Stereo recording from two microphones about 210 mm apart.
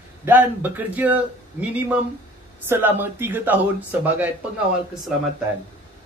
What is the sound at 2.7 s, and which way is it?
Speech, 10° right (ahead or behind).